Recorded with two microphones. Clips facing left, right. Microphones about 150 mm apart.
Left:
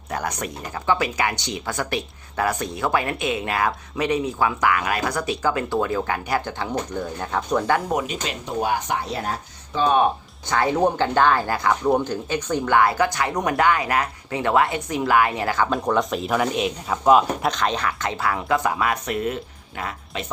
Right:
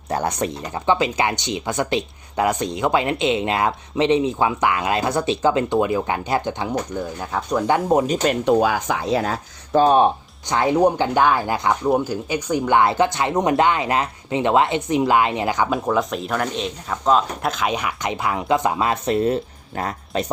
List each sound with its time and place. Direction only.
0.1 s speech: 30° right (ahead or behind); by 7.6 s 5° right (ahead or behind)
7.7 s speech: 25° right (ahead or behind)
8.0 s speech: 45° right (ahead or behind)
8.4 s speech: 90° right
9.7 s speech: 40° right (ahead or behind)
10.5 s speech: 15° right (ahead or behind)
11.9 s speech: 10° right (ahead or behind)
15.7 s speech: 5° right (ahead or behind)
17.5 s speech: 10° right (ahead or behind); by 20.2 s 40° right (ahead or behind)